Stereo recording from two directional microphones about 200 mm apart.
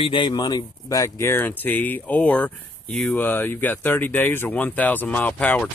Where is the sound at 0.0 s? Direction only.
25° left (ahead or behind).